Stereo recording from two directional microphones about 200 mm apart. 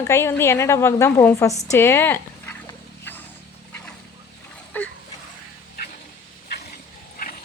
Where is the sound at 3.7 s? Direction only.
5° left (ahead or behind).